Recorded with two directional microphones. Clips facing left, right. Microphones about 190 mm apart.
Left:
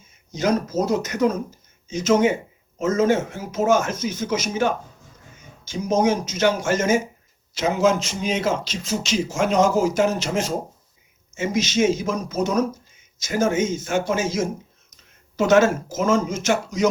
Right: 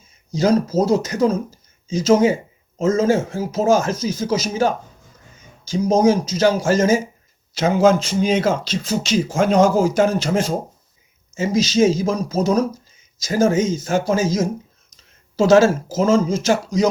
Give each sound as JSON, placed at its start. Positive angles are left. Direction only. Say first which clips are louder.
{"t": 0.3, "sound": "speech", "louder": "right 5 dB", "side_deg": -35}